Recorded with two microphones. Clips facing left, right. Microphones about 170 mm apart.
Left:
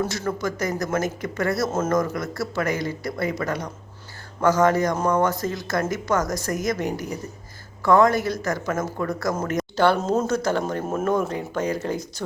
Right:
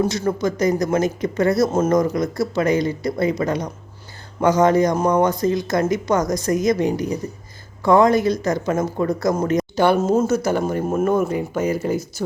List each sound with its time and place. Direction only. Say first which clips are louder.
0.0 s speech: right 5 dB; 20° right (ahead or behind)